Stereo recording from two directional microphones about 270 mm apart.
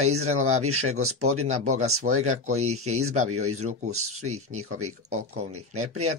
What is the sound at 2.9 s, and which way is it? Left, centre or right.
Speech, right.